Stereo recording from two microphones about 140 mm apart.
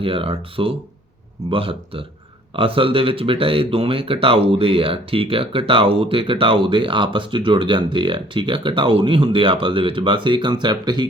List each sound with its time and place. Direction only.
0.0 s speech: 40° right (ahead or behind)